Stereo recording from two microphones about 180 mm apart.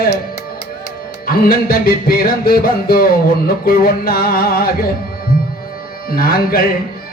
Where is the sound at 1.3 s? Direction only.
55° left (ahead or behind).